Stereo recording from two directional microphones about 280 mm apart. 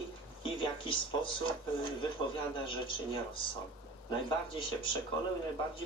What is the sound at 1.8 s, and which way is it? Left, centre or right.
Speech, centre.